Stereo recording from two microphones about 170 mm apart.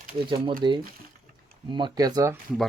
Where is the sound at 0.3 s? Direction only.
30° right (ahead or behind).